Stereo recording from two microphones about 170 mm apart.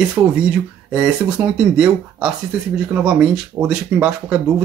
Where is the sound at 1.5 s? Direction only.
5° right (ahead or behind).